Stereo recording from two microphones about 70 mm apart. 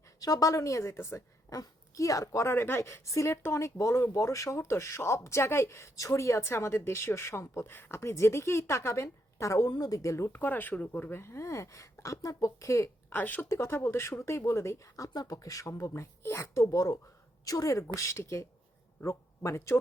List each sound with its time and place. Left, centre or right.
0.2 s a woman's voice: left
2.6 s speech: left
9.6 s a woman's voice: left
10.3 s speech: left
11.1 s a woman's voice: left
13.1 s speech: left
13.5 s a woman's voice: left
15.1 s a woman's voice: left
16.6 s a woman's voice: left